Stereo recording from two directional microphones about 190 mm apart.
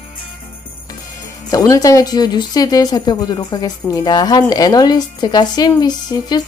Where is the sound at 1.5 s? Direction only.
20° left (ahead or behind).